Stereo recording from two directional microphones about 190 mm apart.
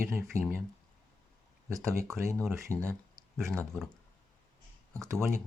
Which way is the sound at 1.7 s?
15° right (ahead or behind).